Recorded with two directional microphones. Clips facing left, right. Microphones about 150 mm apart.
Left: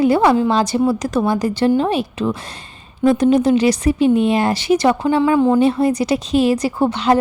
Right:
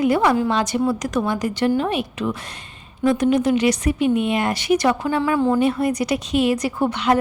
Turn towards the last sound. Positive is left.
turn(degrees=30)  # may be behind; listen again after turning